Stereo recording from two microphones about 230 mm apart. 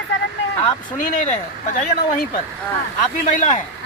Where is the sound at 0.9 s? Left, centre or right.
Left.